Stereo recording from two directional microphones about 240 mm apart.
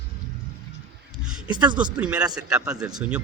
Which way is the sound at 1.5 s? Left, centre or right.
Centre.